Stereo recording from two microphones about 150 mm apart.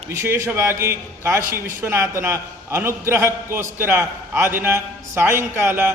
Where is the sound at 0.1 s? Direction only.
15° right (ahead or behind).